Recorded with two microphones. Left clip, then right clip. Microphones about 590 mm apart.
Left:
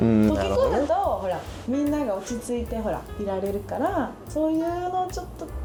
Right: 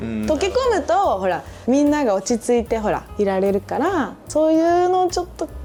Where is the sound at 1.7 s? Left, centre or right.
Right.